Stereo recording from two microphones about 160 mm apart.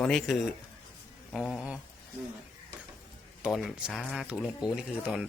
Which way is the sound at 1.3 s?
Centre (ahead or behind).